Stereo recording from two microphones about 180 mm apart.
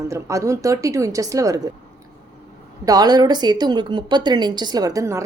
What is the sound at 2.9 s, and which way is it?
A woman's voice, 20° right (ahead or behind).